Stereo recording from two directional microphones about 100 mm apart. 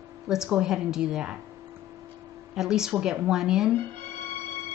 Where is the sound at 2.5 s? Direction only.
5° right (ahead or behind).